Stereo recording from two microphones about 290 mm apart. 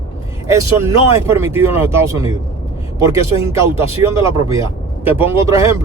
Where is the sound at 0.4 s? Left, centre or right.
Centre.